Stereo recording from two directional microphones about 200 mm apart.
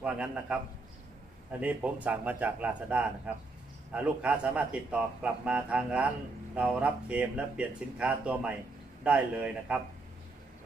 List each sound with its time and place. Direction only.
0.0 s speech: 5° right (ahead or behind)
1.6 s speech: 5° right (ahead or behind)